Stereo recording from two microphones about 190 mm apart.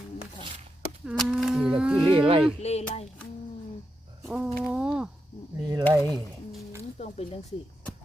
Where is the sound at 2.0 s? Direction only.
25° right (ahead or behind).